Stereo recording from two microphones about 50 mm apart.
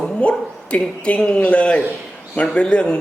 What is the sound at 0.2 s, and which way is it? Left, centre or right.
Speech, left.